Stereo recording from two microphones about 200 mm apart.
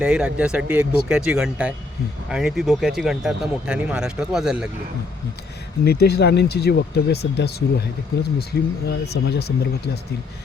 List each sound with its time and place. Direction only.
0.0 s speech: 5° right (ahead or behind)
5.8 s speech: 55° left (ahead or behind)